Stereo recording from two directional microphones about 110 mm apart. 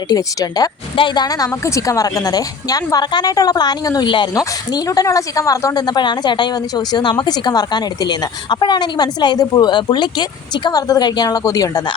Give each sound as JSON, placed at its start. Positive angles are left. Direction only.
{"t": 0.1, "sound": "a woman's voice", "side_deg": 35}
{"t": 0.9, "sound": "a woman's voice", "side_deg": 45}
{"t": 4.7, "sound": "a woman's voice", "side_deg": 30}